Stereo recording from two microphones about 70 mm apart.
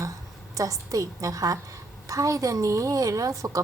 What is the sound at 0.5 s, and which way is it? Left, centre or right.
A woman's voice, right.